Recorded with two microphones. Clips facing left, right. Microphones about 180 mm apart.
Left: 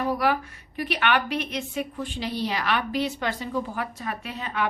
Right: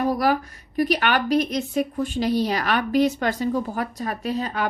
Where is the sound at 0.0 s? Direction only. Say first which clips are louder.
Right 3 dB; 40° right (ahead or behind).